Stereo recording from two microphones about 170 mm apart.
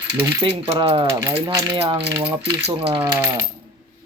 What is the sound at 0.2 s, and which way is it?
Speech, 15° right (ahead or behind).